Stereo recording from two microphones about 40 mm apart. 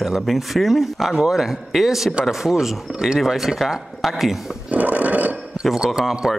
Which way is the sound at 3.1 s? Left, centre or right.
Centre.